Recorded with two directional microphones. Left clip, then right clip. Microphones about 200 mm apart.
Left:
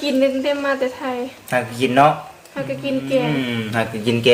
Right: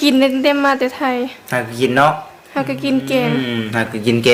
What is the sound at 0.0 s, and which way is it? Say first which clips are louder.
A woman's voice: right 4 dB; 55° right (ahead or behind).